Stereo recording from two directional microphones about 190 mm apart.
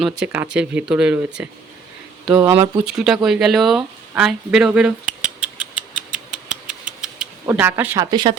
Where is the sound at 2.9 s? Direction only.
Centre (ahead or behind).